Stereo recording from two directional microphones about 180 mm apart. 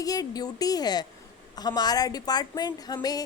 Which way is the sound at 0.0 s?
20° left (ahead or behind).